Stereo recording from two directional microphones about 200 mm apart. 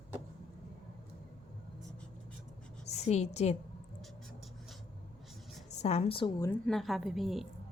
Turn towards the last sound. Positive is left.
turn(degrees=0)  # may be behind; listen again after turning